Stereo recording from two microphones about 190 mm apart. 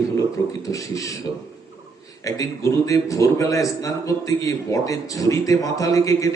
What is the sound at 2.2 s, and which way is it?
A man's voice, 15° left (ahead or behind).